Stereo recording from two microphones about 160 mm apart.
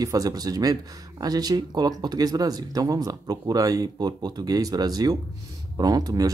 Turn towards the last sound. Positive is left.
turn(degrees=-20)  # may be behind; listen again after turning